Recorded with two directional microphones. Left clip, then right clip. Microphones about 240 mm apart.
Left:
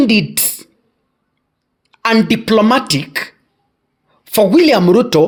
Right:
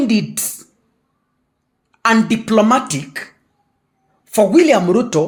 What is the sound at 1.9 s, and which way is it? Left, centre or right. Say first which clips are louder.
A woman's voice: left 1 dB; left.